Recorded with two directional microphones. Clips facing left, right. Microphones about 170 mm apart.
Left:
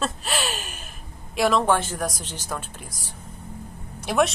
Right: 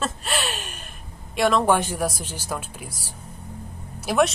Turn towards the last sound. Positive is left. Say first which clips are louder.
# right 1 dB
turn(degrees=0)  # may be behind; listen again after turning